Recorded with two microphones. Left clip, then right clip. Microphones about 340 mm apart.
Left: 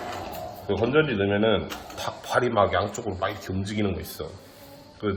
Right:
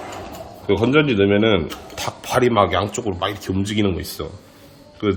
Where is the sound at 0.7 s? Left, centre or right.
Right.